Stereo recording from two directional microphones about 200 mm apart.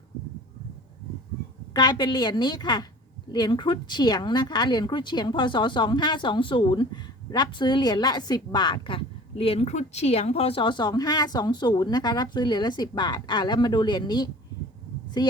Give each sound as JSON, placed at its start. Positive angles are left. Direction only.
{"t": 1.7, "sound": "a woman's voice", "side_deg": 20}